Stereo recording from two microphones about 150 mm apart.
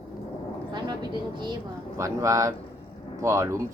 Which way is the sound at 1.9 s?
20° right (ahead or behind).